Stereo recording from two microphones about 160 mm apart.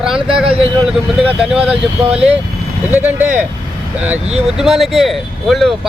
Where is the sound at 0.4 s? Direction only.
35° right (ahead or behind).